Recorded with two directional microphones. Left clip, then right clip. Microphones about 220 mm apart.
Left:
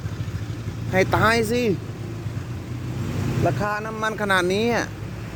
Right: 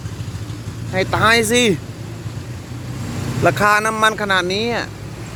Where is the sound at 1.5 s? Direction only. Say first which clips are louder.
Right 7 dB; 10° right (ahead or behind).